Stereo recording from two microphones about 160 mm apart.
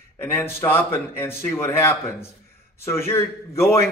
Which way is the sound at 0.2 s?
15° left (ahead or behind).